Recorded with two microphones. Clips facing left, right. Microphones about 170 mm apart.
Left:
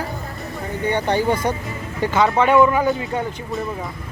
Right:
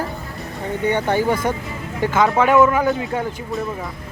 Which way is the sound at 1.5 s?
20° left (ahead or behind).